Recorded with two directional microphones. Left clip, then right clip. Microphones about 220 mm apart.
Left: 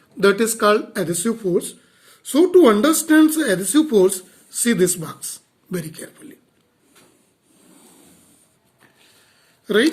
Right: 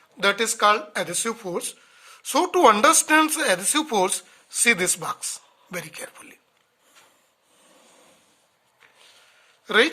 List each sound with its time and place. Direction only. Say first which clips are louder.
0.2 s speech: left 4 dB; 25° right (ahead or behind)
9.6 s speech: left 2 dB; 30° right (ahead or behind)